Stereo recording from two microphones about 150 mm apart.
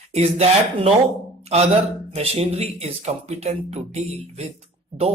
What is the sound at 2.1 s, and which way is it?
Speech, 45° right (ahead or behind).